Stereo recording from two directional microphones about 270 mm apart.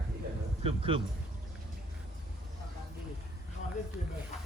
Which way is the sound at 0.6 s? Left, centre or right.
Right.